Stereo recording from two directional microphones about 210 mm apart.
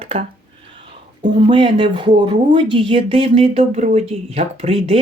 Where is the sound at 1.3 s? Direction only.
25° right (ahead or behind).